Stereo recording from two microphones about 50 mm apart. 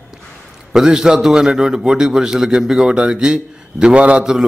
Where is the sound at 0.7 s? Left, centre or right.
Centre.